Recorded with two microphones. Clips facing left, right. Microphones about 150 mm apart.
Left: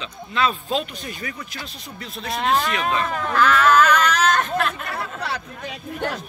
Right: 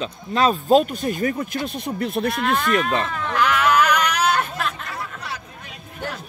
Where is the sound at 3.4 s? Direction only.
15° right (ahead or behind).